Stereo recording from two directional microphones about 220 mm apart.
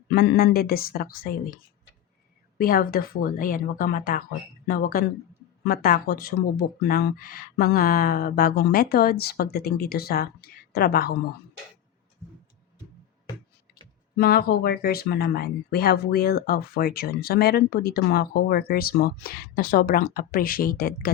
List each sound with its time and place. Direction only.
0.1 s speech: 45° left (ahead or behind)
2.6 s speech: 40° left (ahead or behind)
14.2 s speech: 45° left (ahead or behind)